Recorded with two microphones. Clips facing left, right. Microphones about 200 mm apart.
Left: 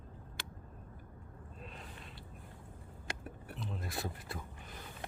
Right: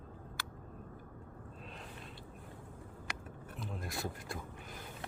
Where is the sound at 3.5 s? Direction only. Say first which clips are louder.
Even; centre (ahead or behind).